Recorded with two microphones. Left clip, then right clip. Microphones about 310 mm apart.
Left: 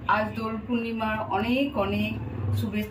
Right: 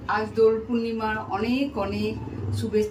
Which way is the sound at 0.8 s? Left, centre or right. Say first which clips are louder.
Right 1 dB; centre.